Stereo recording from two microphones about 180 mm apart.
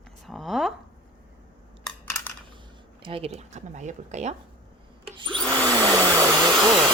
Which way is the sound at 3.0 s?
30° right (ahead or behind).